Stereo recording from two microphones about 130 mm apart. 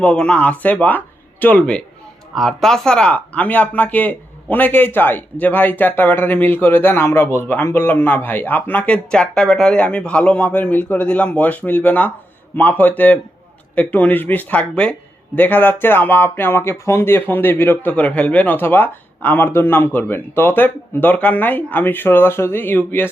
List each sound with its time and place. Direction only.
0.0 s speech: 5° left (ahead or behind)